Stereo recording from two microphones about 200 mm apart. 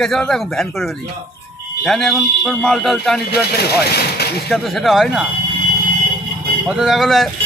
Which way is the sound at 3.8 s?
55° left (ahead or behind).